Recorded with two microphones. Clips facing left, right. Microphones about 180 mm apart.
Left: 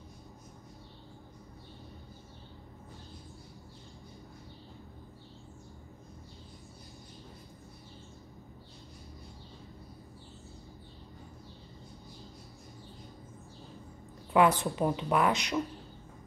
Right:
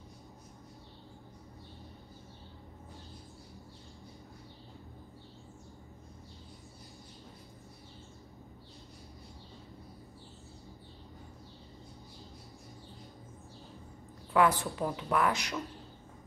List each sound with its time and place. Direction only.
14.3 s speech: 20° left (ahead or behind)